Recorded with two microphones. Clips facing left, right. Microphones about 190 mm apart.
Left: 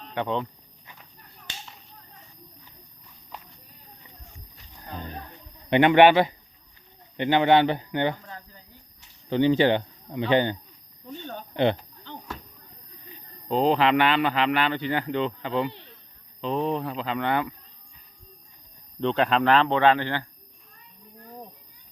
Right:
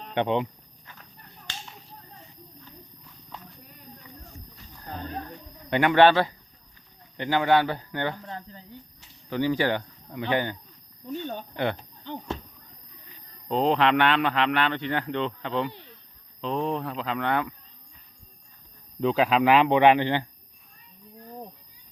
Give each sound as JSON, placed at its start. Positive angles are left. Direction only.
{"t": 0.1, "sound": "speech", "side_deg": -20}
{"t": 5.7, "sound": "speech", "side_deg": 20}
{"t": 9.3, "sound": "speech", "side_deg": 25}
{"t": 13.5, "sound": "a man's voice", "side_deg": 0}
{"t": 18.9, "sound": "speech", "side_deg": -5}